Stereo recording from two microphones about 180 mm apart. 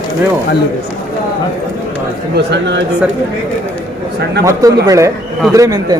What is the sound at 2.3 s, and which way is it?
Speech, 75° right (ahead or behind).